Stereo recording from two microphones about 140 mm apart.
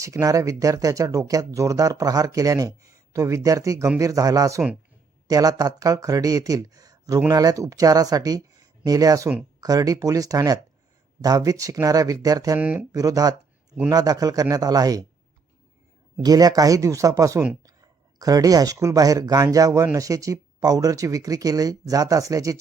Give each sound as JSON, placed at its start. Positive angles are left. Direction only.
{"t": 0.0, "sound": "speech", "side_deg": -20}
{"t": 12.5, "sound": "speech", "side_deg": -10}
{"t": 12.9, "sound": "speech", "side_deg": -25}
{"t": 16.2, "sound": "speech", "side_deg": -30}